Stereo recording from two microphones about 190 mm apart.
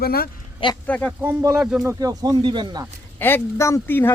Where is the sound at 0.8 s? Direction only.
10° left (ahead or behind).